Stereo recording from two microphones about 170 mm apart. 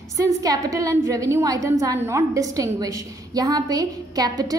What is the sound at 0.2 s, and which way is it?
A woman's voice, 20° right (ahead or behind).